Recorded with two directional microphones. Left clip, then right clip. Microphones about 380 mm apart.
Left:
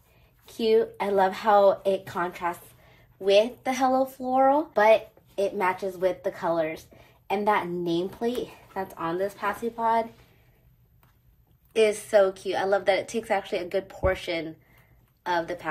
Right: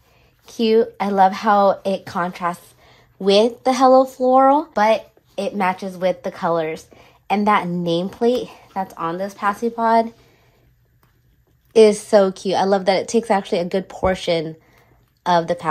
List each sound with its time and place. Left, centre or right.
0.9 s a woman's voice: right
11.7 s speech: centre